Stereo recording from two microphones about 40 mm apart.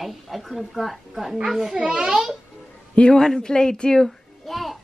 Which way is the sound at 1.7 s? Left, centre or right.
Right.